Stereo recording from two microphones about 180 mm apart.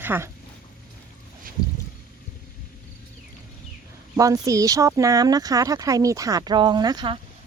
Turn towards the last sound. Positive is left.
turn(degrees=-25)  # may be behind; listen again after turning